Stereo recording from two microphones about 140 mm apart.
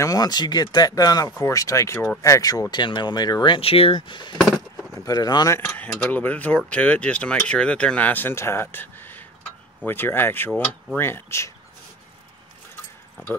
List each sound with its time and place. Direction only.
0.0 s speech: 25° left (ahead or behind)
4.4 s keys jangling: centre (ahead or behind)
4.9 s speech: 25° left (ahead or behind)
5.9 s speech: 10° left (ahead or behind)